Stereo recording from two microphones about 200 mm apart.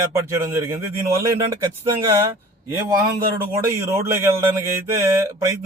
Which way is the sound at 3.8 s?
10° right (ahead or behind).